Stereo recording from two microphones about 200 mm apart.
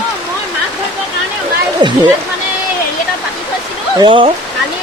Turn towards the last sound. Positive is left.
turn(degrees=-25)  # may be behind; listen again after turning